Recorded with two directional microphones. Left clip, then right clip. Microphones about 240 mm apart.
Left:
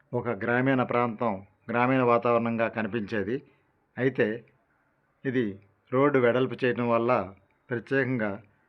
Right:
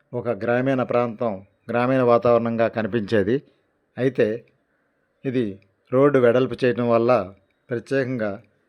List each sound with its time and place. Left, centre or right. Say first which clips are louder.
0.2 s speech: right 5 dB; centre
3.9 s speech: right 5 dB; centre